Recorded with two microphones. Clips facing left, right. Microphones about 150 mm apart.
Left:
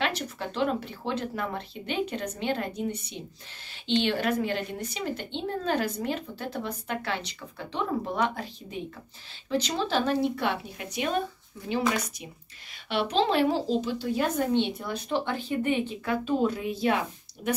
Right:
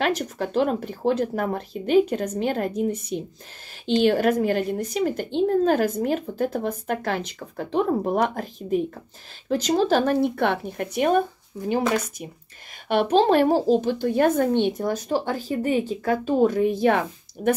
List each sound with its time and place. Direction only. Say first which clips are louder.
0.0 s a woman's voice: right 6 dB; 45° right (ahead or behind)
12.8 s a woman's voice: right 7 dB; 50° right (ahead or behind)